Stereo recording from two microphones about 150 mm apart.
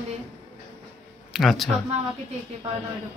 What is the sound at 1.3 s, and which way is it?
Speech, centre (ahead or behind).